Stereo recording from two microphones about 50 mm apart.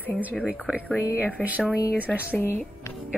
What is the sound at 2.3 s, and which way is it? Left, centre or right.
Speech, left.